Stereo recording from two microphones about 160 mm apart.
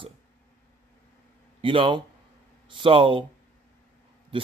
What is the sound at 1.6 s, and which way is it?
Speech, 35° right (ahead or behind).